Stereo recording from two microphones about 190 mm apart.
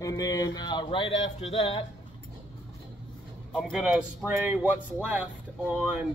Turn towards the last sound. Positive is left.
turn(degrees=-10)  # may be behind; listen again after turning